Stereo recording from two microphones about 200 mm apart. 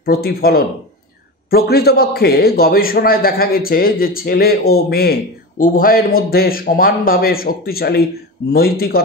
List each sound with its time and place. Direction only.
0.0 s a man's voice: 50° left (ahead or behind)